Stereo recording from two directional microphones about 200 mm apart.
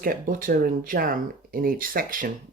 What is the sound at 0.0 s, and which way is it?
Speech, 45° right (ahead or behind).